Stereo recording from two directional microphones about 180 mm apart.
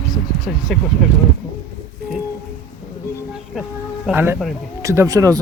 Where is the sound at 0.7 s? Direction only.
Centre (ahead or behind).